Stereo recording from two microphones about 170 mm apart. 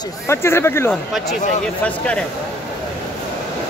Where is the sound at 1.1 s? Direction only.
Centre (ahead or behind).